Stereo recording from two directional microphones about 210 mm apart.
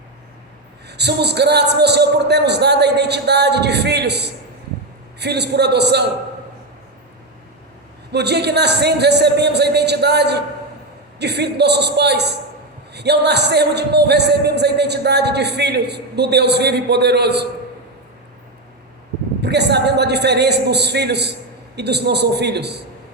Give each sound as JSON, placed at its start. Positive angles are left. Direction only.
{"t": 0.9, "sound": "speech", "side_deg": -55}
{"t": 8.1, "sound": "speech", "side_deg": -50}
{"t": 19.4, "sound": "speech", "side_deg": -55}